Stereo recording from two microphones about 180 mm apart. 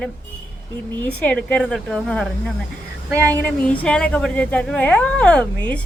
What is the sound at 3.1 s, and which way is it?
Speech, 15° right (ahead or behind).